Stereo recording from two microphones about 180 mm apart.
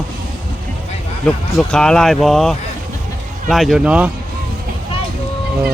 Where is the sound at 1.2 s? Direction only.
5° left (ahead or behind).